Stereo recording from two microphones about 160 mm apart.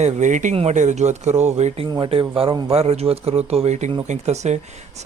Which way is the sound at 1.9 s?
30° right (ahead or behind).